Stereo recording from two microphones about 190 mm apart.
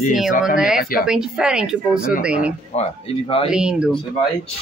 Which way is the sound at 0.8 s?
50° left (ahead or behind).